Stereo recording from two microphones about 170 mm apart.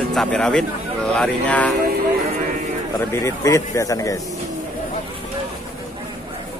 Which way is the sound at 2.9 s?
15° left (ahead or behind).